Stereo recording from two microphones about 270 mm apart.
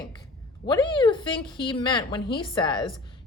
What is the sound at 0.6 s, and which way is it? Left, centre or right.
A woman's voice, centre.